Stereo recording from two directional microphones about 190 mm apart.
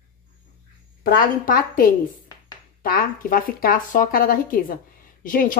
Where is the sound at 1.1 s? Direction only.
50° left (ahead or behind).